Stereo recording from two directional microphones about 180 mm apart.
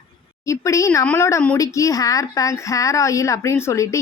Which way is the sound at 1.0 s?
15° left (ahead or behind).